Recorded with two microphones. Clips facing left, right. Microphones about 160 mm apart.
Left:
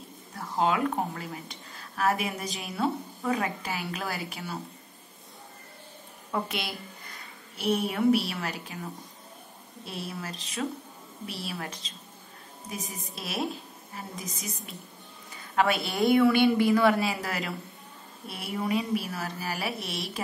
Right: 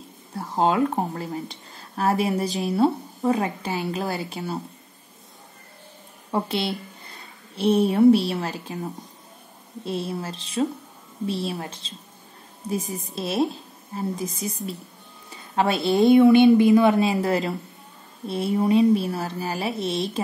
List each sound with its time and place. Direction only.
0.4 s a woman's voice: 35° right (ahead or behind)
6.3 s a woman's voice: 30° right (ahead or behind)
9.8 s a woman's voice: 25° right (ahead or behind)